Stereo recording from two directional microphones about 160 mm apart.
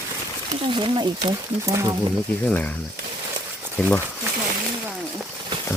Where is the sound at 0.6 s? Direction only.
30° right (ahead or behind).